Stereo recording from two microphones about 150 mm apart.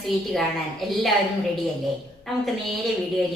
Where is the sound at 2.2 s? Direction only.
Centre (ahead or behind).